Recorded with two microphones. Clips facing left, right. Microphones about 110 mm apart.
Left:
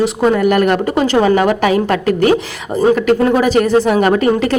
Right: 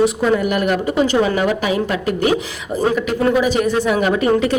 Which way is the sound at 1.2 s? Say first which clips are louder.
Left 5 dB; 55° left (ahead or behind).